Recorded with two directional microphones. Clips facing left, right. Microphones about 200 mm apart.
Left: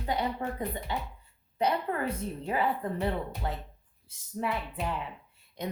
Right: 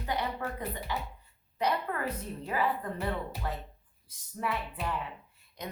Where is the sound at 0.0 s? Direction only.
25° left (ahead or behind).